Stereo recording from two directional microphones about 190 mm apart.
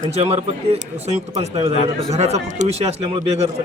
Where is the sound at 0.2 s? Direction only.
30° right (ahead or behind).